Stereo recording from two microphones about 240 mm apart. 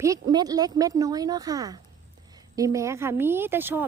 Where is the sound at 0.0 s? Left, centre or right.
Centre.